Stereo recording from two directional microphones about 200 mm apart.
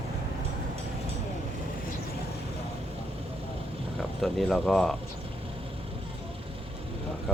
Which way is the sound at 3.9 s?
Centre (ahead or behind).